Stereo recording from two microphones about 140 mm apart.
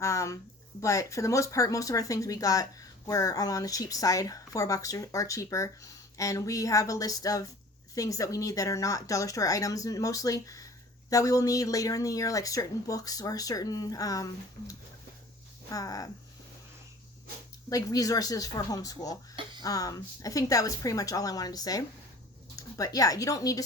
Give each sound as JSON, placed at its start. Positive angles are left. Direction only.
{"t": 0.0, "sound": "speech", "side_deg": 20}
{"t": 15.7, "sound": "speech", "side_deg": 25}
{"t": 17.7, "sound": "speech", "side_deg": 25}